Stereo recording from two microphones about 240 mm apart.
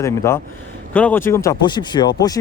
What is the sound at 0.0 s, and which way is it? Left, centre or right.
Speech, centre.